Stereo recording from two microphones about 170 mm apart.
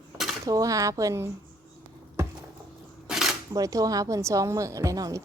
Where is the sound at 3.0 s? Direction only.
5° right (ahead or behind).